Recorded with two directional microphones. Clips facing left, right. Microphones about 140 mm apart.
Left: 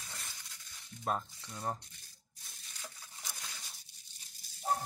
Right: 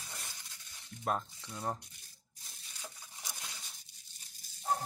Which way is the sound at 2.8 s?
15° right (ahead or behind).